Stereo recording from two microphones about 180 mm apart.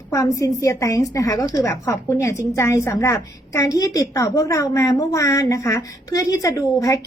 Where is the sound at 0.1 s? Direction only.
20° left (ahead or behind).